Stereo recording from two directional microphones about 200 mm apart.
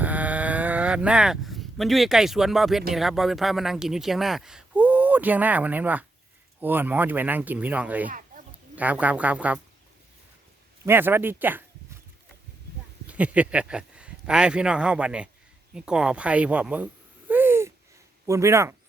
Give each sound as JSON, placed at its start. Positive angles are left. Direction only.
{"t": 0.0, "sound": "a sound", "side_deg": -5}
{"t": 2.9, "sound": "speech", "side_deg": 0}
{"t": 8.1, "sound": "a sound", "side_deg": -40}
{"t": 8.7, "sound": "speech", "side_deg": -5}
{"t": 10.8, "sound": "speech", "side_deg": -10}
{"t": 13.1, "sound": "a man's voice", "side_deg": -5}